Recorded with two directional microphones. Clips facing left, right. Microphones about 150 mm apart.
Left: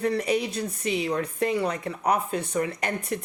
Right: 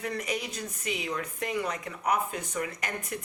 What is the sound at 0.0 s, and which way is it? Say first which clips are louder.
Speech: left 8 dB; 35° left (ahead or behind).